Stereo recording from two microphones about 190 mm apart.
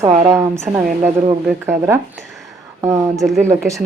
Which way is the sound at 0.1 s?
35° right (ahead or behind).